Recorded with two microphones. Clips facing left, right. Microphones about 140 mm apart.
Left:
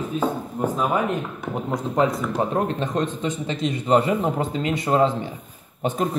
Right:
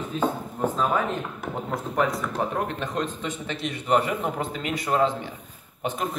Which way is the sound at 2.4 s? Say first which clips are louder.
Left 5 dB; 25° left (ahead or behind).